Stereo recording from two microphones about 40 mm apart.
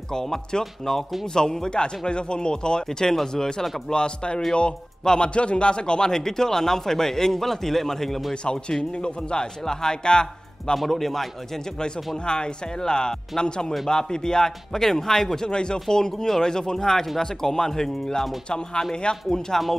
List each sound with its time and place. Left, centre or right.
0.1 s speech: centre
8.5 s speech: centre
10.8 s speech: centre
12.3 s speech: left
18.5 s speech: left